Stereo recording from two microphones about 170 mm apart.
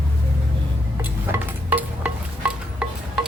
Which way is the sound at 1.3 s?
10° right (ahead or behind).